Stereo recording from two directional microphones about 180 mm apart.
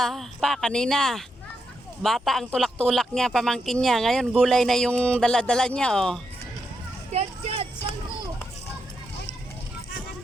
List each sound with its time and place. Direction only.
0.0 s speech: centre (ahead or behind)
7.1 s children playing: 35° right (ahead or behind)